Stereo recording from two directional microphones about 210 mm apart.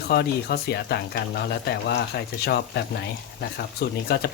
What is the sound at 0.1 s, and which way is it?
Speech, 50° left (ahead or behind).